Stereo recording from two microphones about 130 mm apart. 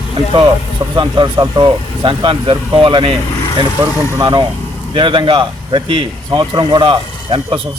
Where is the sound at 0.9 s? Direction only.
30° right (ahead or behind).